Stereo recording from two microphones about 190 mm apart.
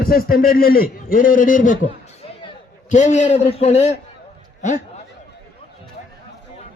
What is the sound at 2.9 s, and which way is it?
A man's voice, 40° left (ahead or behind).